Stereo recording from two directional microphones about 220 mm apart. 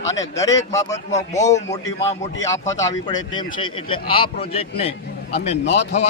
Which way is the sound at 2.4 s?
15° left (ahead or behind).